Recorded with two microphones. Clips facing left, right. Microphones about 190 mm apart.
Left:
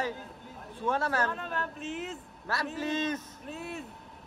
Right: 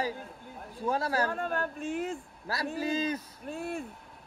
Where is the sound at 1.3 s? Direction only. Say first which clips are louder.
Right 4 dB; 50° right (ahead or behind).